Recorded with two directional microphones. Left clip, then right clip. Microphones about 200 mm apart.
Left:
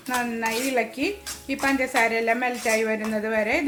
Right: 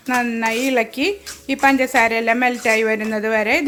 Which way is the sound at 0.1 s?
45° right (ahead or behind).